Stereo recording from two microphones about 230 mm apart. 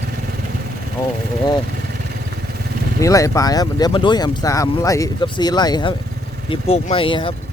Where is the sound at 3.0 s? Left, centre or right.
Centre.